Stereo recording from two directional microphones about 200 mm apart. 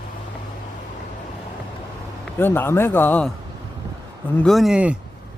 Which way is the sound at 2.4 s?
10° left (ahead or behind).